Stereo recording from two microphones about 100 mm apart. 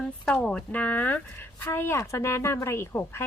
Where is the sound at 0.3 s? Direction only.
10° left (ahead or behind).